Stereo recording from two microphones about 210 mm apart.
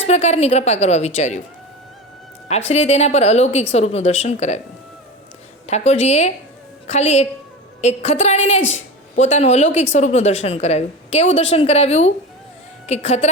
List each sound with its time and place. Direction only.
0.1 s a woman's voice: 30° left (ahead or behind)
2.5 s a woman's voice: 30° left (ahead or behind)
5.6 s a woman's voice: 30° left (ahead or behind)